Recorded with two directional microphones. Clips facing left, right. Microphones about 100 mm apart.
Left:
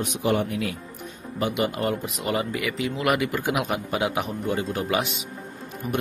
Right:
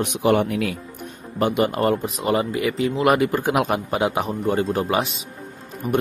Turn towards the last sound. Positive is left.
turn(degrees=-20)  # may be behind; listen again after turning